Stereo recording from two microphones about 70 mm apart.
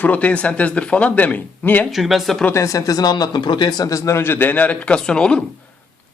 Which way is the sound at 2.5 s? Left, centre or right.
Left.